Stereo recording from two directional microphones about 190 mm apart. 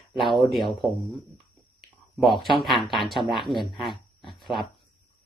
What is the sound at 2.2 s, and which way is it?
Speech, centre (ahead or behind).